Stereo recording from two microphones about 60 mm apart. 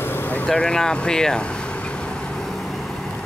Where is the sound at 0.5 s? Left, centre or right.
Centre.